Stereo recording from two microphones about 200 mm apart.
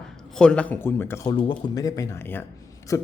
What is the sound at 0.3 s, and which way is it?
Speech, 5° left (ahead or behind).